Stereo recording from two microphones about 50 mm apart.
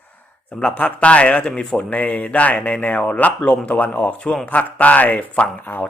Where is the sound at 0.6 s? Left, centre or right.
Left.